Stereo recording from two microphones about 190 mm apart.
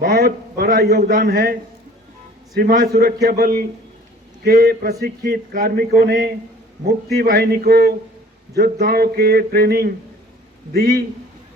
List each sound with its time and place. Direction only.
0.0 s a man's voice: 50° right (ahead or behind)
2.6 s a man's voice: 50° right (ahead or behind)